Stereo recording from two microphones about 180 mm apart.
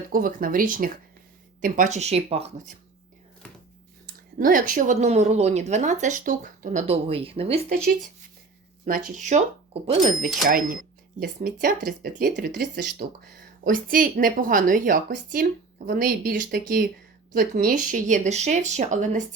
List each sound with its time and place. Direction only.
0.1 s speech: 50° right (ahead or behind); by 2.5 s 35° right (ahead or behind)
4.0 s speech: 50° right (ahead or behind)
6.8 s speech: 30° right (ahead or behind)
8.8 s speech: 50° right (ahead or behind)
11.6 s speech: 55° right (ahead or behind)